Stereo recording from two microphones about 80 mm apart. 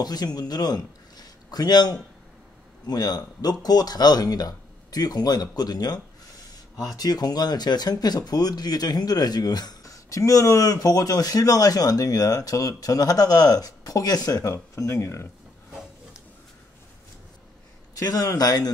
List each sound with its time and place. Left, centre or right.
0.0 s a man's voice: left
17.9 s speech: left